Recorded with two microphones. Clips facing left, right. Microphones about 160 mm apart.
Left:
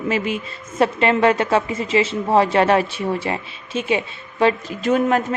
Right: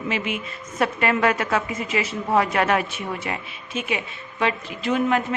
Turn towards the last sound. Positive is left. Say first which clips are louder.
# left 4 dB
turn(degrees=40)  # may be behind; listen again after turning